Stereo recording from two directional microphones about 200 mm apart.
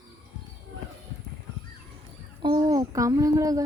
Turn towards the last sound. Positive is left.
turn(degrees=-15)  # may be behind; listen again after turning